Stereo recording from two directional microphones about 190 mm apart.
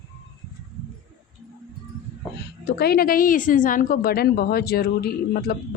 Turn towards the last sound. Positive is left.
turn(degrees=55)  # may be behind; listen again after turning